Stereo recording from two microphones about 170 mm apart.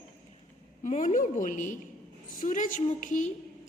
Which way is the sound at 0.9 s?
45° left (ahead or behind).